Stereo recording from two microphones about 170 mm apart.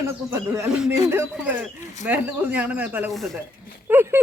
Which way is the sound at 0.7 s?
5° right (ahead or behind).